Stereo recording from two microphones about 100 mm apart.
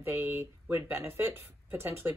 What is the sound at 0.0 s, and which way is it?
Speech, 25° right (ahead or behind).